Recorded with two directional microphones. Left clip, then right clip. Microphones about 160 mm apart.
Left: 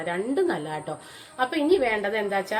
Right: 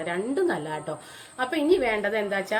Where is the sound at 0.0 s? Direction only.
Centre (ahead or behind).